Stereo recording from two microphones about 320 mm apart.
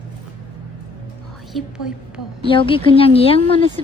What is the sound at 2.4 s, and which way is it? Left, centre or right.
A woman's voice, centre.